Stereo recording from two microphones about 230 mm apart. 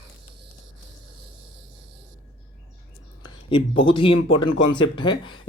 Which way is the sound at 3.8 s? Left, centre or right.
Left.